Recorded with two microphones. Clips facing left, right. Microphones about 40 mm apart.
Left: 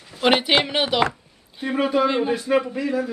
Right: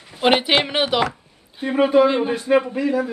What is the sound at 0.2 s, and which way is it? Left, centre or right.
A man's voice, centre.